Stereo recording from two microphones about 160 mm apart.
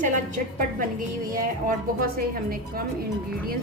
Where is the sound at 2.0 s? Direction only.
65° right (ahead or behind).